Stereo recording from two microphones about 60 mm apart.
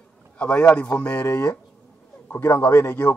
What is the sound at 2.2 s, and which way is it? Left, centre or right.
Speech, left.